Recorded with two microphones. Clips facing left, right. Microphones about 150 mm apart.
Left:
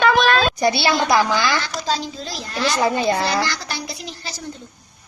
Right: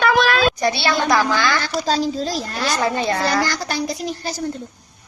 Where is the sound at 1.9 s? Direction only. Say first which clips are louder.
Right 8 dB; 40° right (ahead or behind).